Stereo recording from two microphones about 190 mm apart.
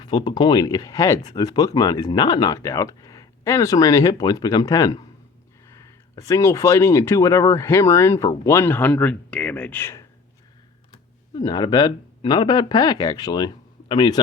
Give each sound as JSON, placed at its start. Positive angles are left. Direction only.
{"t": 0.0, "sound": "speech", "side_deg": 25}
{"t": 1.2, "sound": "speech", "side_deg": 30}
{"t": 1.5, "sound": "speech", "side_deg": 20}
{"t": 11.3, "sound": "speech", "side_deg": 20}